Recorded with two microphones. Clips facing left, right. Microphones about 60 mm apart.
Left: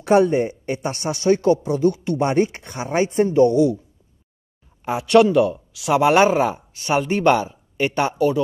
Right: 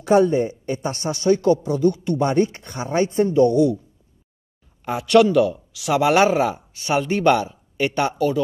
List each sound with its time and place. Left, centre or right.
0.3 s speech: left
4.8 s speech: centre